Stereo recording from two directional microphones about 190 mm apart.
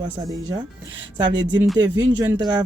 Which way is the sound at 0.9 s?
75° right (ahead or behind).